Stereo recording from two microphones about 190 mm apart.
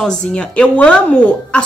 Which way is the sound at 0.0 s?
5° left (ahead or behind).